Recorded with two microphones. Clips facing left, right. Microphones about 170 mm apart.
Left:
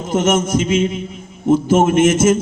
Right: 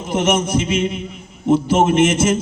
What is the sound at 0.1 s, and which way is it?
A man's voice, 45° left (ahead or behind).